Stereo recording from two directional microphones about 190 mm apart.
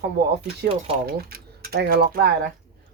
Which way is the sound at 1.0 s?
55° right (ahead or behind).